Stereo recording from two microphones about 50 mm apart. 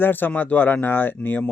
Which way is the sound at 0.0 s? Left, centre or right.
Left.